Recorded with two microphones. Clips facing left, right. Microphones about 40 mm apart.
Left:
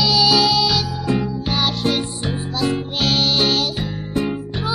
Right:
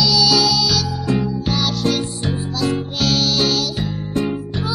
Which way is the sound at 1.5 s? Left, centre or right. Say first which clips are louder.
Left 1 dB; left.